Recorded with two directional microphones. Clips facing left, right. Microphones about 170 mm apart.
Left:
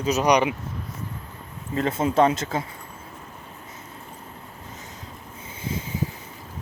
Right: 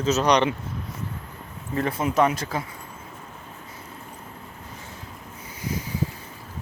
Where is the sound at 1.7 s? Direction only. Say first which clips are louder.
Left 2 dB; 25° left (ahead or behind).